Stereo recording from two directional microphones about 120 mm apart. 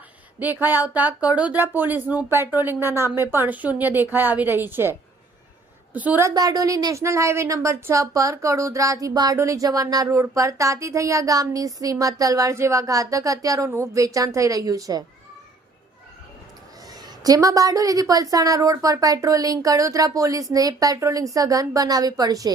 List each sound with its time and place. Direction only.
0.6 s speech: 15° right (ahead or behind)
6.2 s speech: 30° right (ahead or behind)
16.9 s speech: 30° right (ahead or behind)